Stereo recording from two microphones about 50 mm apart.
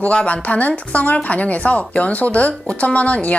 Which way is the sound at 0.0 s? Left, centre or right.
Left.